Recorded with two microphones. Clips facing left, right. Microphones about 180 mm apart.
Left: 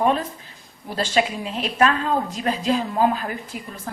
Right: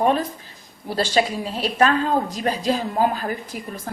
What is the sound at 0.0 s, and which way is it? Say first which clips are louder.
A woman's voice: right 1 dB; 35° right (ahead or behind).